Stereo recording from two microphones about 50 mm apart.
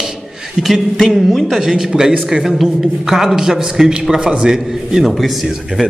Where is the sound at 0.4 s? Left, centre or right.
Centre.